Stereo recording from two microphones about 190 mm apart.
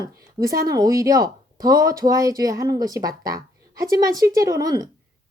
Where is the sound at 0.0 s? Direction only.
20° right (ahead or behind).